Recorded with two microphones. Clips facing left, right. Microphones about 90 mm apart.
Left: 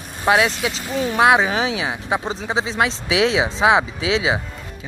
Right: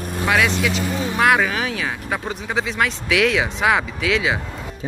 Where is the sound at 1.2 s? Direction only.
20° left (ahead or behind).